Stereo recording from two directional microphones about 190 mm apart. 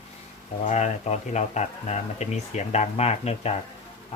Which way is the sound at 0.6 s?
40° left (ahead or behind).